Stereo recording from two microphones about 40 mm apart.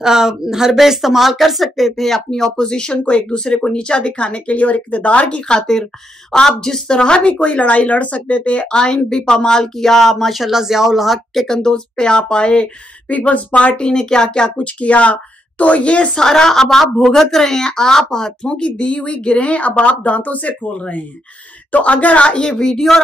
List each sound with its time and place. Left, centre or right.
0.0 s speech: centre; by 5.4 s left
5.5 s speech: centre
6.9 s speech: left; by 11.4 s centre
11.4 s speech: centre
13.1 s speech: left
13.7 s speech: left
14.8 s a woman's voice: left
16.1 s speech: centre; by 20.5 s left
20.6 s speech: left
21.7 s speech: left
22.6 s speech: centre